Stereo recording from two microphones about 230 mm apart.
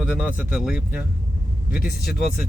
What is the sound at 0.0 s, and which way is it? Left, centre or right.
Speech, centre.